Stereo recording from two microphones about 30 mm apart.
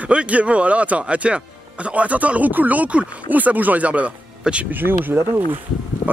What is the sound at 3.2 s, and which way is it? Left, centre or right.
Speech, right.